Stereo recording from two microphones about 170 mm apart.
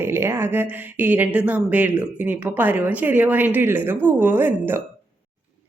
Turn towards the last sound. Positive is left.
turn(degrees=-10)  # may be behind; listen again after turning